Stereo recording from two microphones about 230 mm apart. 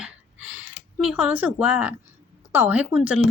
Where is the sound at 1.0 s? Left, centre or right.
Centre.